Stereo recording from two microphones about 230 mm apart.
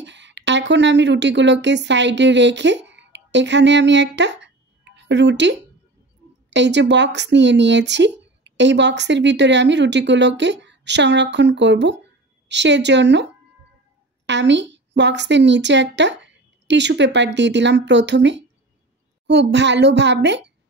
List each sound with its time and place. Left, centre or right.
0.0 s a woman's voice: right